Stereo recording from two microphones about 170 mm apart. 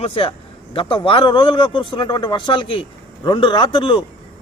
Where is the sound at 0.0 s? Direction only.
35° left (ahead or behind).